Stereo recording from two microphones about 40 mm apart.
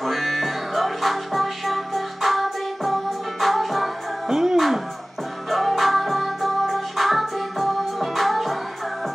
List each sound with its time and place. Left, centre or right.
0.0 s music: centre
4.3 s music: centre
4.6 s a sound: centre
5.5 s music: centre